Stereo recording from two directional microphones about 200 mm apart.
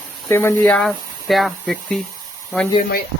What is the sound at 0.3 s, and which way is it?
Speech, 10° left (ahead or behind).